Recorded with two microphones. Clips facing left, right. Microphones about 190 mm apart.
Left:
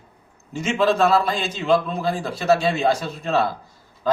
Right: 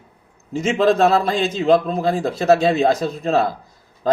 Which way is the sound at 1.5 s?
35° right (ahead or behind).